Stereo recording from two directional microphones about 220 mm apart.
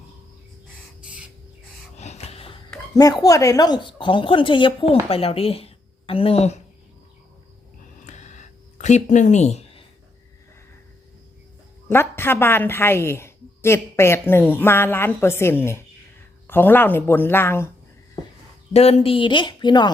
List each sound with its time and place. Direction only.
2.0 s gasp: 30° left (ahead or behind)
2.9 s speech: 15° left (ahead or behind)
8.0 s a sound: 35° left (ahead or behind)
11.9 s a woman's voice: 10° left (ahead or behind)
18.7 s speech: 30° left (ahead or behind)